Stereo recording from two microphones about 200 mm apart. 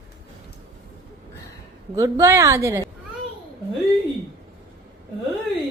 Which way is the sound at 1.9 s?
15° right (ahead or behind).